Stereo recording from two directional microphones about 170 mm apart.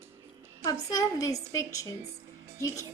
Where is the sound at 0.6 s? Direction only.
20° left (ahead or behind).